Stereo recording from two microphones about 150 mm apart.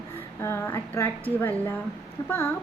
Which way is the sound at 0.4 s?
15° left (ahead or behind).